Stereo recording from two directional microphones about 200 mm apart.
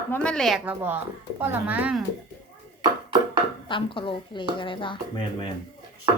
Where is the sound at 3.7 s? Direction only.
25° left (ahead or behind).